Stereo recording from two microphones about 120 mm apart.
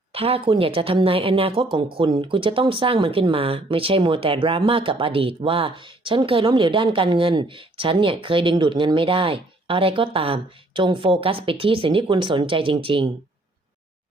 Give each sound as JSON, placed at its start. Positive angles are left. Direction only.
{"t": 0.1, "sound": "speech", "side_deg": -55}